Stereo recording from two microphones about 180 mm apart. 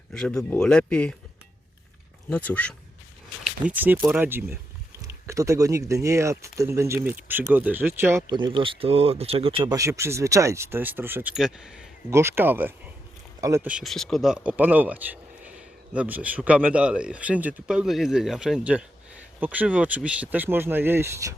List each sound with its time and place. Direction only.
0.1 s speech: 5° left (ahead or behind)
2.3 s speech: 5° left (ahead or behind)
3.7 s speech: 10° right (ahead or behind)
8.3 s speech: 25° right (ahead or behind)
9.7 s speech: 15° right (ahead or behind)